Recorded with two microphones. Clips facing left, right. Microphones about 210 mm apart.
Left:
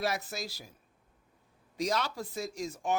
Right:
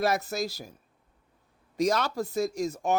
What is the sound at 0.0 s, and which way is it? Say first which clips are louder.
Speech: right 7 dB; 45° right (ahead or behind).